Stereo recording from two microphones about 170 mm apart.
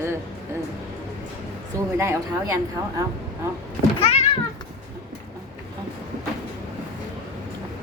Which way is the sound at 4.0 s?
35° left (ahead or behind).